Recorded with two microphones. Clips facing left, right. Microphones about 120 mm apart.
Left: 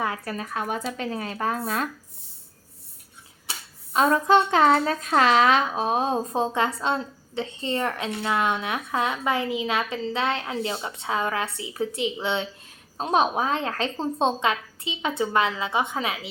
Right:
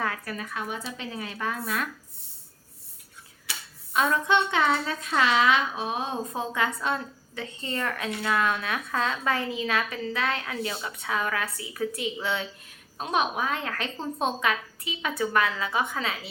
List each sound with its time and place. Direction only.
0.3 s speech: 40° left (ahead or behind)
3.9 s a woman's voice: 35° left (ahead or behind); by 16.3 s 20° left (ahead or behind)